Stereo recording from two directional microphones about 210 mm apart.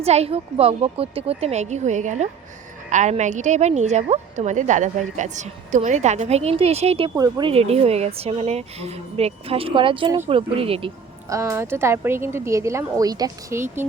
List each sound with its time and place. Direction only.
0.0 s a woman's voice: 30° right (ahead or behind)
11.3 s a woman's voice: 15° right (ahead or behind)